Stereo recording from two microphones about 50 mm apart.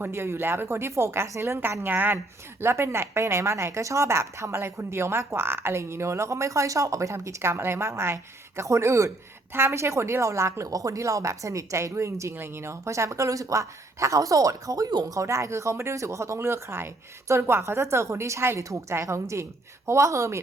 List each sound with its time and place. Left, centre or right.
0.0 s a woman's voice: right
1.9 s a woman's voice: right
2.6 s a woman's voice: right
9.5 s speech: right
9.7 s speech: right
12.3 s speech: right
12.7 s speech: right
15.2 s a woman's voice: right